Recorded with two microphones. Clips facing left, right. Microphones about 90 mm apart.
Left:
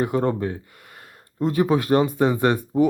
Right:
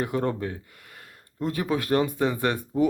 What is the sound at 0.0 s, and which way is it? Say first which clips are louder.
Speech: left 5 dB; 15° left (ahead or behind).